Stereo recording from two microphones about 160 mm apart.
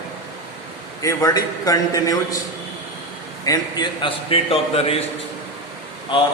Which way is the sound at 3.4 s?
25° left (ahead or behind).